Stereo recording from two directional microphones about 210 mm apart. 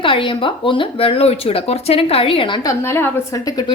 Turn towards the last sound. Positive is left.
turn(degrees=15)  # may be behind; listen again after turning